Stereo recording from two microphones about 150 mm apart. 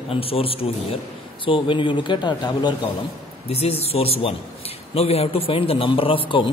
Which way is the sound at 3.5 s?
40° left (ahead or behind).